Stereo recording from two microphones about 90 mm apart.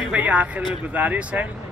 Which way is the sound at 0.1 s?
15° right (ahead or behind).